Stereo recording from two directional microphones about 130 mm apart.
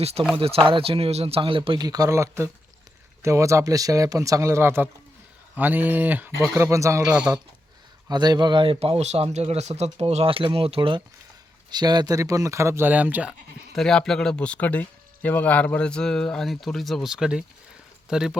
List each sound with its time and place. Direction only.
0.3 s speech: 50° right (ahead or behind); by 7.0 s 25° right (ahead or behind)
7.0 s speech: 10° right (ahead or behind)
8.0 s speech: 30° right (ahead or behind); by 13.3 s 10° right (ahead or behind)
13.7 s speech: 5° left (ahead or behind)